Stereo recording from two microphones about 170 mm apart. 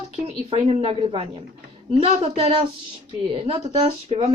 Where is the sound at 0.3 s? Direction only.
35° right (ahead or behind).